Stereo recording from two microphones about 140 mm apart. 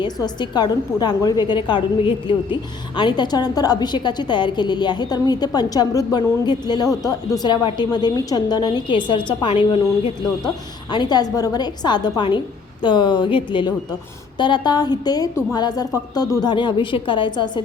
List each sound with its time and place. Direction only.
0.0 s a woman's voice: 30° left (ahead or behind)
10.9 s a woman's voice: 30° left (ahead or behind)